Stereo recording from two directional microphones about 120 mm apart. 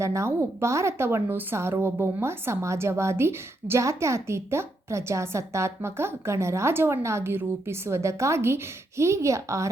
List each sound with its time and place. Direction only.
0.0 s a woman's voice: 25° right (ahead or behind)